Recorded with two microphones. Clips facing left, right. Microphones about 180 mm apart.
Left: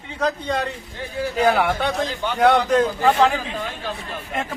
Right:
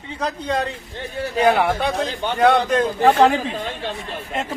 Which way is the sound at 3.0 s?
45° right (ahead or behind).